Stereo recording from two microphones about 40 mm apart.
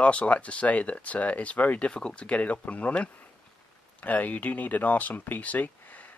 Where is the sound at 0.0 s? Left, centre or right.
Left.